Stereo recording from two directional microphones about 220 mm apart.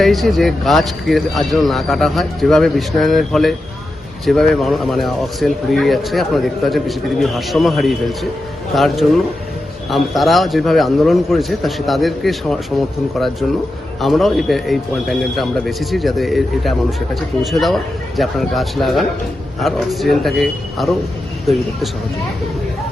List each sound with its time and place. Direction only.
0.0 s speech: centre (ahead or behind)
14.0 s speech: centre (ahead or behind)